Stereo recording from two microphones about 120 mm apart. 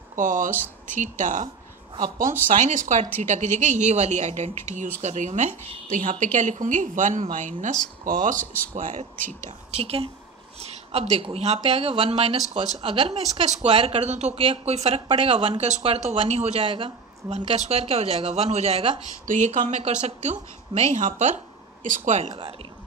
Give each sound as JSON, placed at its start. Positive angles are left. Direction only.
{"t": 0.1, "sound": "a woman's voice", "side_deg": -90}
{"t": 2.0, "sound": "speech", "side_deg": -35}
{"t": 2.5, "sound": "a woman's voice", "side_deg": -90}
{"t": 9.1, "sound": "speech", "side_deg": 15}
{"t": 9.7, "sound": "a woman's voice", "side_deg": -55}
{"t": 13.1, "sound": "speech", "side_deg": -75}
{"t": 13.7, "sound": "speech", "side_deg": -50}
{"t": 16.6, "sound": "speech", "side_deg": -45}
{"t": 17.6, "sound": "a woman's voice", "side_deg": -55}